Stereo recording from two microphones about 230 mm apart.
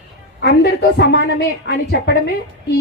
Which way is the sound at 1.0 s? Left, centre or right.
Left.